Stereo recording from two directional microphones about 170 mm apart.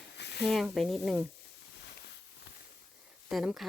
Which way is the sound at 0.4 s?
Centre (ahead or behind).